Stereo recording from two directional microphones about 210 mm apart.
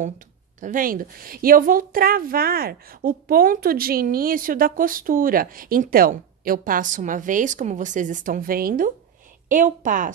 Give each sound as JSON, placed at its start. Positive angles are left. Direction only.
{"t": 0.6, "sound": "a woman's voice", "side_deg": -40}